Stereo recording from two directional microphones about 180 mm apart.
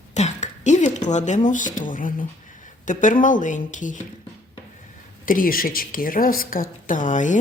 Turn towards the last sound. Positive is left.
turn(degrees=45)  # may be behind; listen again after turning